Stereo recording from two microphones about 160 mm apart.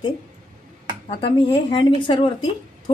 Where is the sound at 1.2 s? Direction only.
30° left (ahead or behind).